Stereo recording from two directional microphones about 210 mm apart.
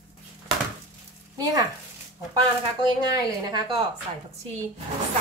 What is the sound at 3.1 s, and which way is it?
Speech, 20° right (ahead or behind).